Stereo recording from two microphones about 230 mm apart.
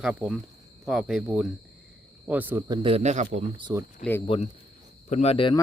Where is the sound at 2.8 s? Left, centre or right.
Right.